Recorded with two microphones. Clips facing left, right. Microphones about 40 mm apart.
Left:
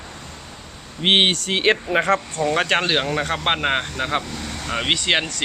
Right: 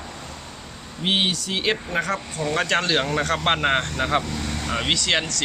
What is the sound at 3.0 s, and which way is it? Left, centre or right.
Speech, centre.